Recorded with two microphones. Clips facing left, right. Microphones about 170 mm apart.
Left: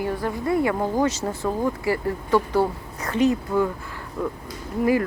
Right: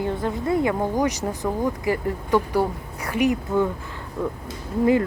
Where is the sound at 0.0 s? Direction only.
20° right (ahead or behind).